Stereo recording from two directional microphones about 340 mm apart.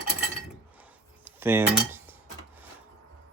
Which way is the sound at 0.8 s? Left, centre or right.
Centre.